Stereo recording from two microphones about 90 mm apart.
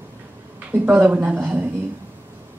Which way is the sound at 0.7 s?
15° right (ahead or behind).